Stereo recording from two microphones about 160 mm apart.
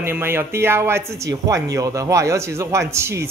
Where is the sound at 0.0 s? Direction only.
15° right (ahead or behind).